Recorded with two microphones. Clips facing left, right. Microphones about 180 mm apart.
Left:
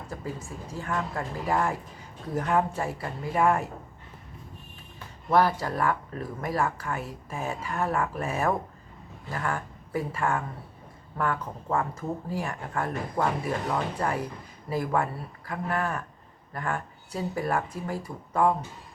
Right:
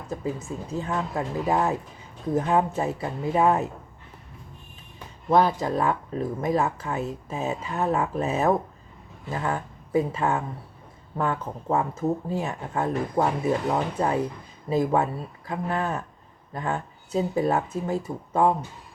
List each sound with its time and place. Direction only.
0.1 s speech: 20° right (ahead or behind)
4.9 s speech: 20° right (ahead or behind)